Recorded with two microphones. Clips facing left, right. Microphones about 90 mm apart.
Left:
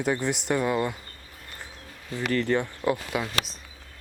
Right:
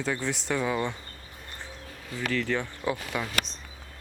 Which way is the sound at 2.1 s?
15° left (ahead or behind).